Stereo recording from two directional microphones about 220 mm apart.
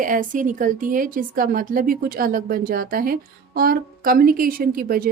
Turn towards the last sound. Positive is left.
turn(degrees=-40)  # may be behind; listen again after turning